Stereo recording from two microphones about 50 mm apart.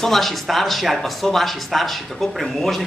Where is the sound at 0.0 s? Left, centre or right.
Centre.